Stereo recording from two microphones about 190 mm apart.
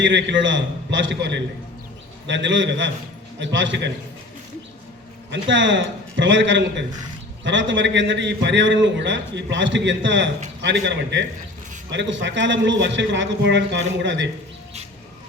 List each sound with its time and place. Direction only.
0.0 s a man's voice: 70° right (ahead or behind)
5.3 s a man's voice: 70° right (ahead or behind)